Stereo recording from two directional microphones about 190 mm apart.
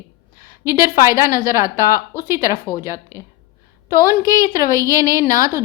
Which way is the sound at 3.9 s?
15° right (ahead or behind).